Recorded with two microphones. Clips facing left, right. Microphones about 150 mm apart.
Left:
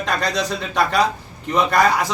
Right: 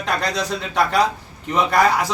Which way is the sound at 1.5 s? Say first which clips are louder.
Even; 10° right (ahead or behind).